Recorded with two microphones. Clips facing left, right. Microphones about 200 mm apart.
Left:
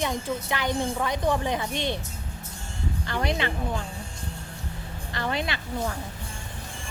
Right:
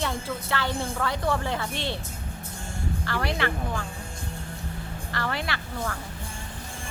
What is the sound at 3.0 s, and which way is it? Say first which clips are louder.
Speech: left 1 dB; 20° left (ahead or behind).